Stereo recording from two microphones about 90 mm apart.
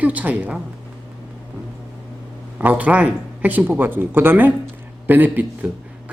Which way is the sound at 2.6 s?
15° right (ahead or behind).